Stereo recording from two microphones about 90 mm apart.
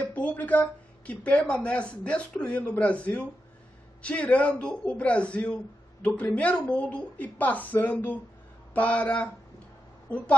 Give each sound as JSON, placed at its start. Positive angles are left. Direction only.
{"t": 0.0, "sound": "a woman's voice", "side_deg": 15}